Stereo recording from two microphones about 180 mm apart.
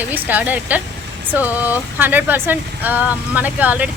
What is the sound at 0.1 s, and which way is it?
Speech, 10° right (ahead or behind).